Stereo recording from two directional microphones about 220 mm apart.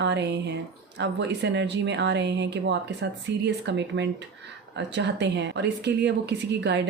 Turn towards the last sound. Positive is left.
turn(degrees=-50)  # may be behind; listen again after turning